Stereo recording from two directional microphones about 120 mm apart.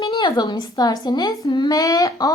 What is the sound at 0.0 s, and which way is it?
A woman's voice, 40° left (ahead or behind).